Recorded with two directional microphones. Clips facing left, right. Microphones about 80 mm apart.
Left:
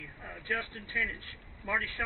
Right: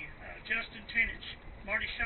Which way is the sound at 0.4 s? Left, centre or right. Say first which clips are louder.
Left 4 dB; left.